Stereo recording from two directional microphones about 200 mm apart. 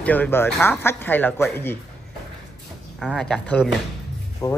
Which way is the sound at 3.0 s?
Centre (ahead or behind).